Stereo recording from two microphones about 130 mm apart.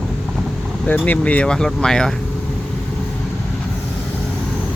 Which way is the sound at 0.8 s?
10° left (ahead or behind).